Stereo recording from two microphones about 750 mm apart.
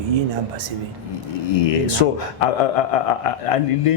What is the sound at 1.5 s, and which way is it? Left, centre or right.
Speech, left.